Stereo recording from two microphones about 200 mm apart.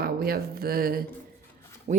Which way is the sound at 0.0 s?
50° right (ahead or behind).